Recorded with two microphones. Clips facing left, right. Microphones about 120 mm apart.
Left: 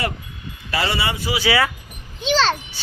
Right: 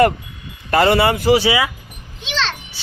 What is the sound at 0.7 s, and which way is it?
Speech, 50° right (ahead or behind).